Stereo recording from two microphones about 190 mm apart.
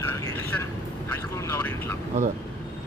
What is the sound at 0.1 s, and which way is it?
Vehicle, 15° left (ahead or behind).